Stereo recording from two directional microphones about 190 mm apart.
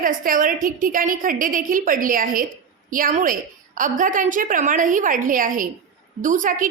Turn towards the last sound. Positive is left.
turn(degrees=-45)  # may be behind; listen again after turning